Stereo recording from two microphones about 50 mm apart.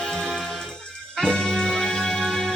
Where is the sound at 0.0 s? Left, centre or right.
Centre.